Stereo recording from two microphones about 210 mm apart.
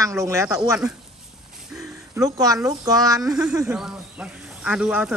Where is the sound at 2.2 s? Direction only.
15° right (ahead or behind).